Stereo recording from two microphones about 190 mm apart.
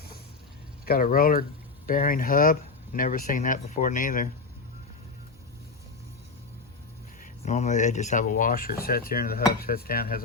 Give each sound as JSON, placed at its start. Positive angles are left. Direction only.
{"t": 0.9, "sound": "speech", "side_deg": 50}
{"t": 7.4, "sound": "speech", "side_deg": 35}